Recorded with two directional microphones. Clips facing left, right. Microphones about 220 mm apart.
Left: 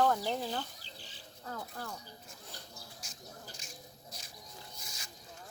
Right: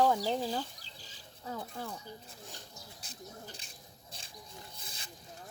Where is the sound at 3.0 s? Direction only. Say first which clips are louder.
Right 3 dB; 35° right (ahead or behind).